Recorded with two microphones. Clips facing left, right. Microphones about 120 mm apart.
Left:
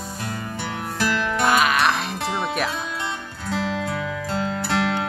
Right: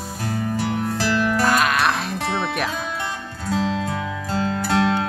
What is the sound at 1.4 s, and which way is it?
Music, centre (ahead or behind).